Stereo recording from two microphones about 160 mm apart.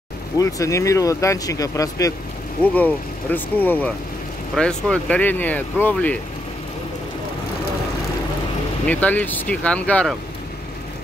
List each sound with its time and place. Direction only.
0.4 s speech: 20° left (ahead or behind)
2.6 s speech: 10° left (ahead or behind)
8.8 s speech: 10° left (ahead or behind)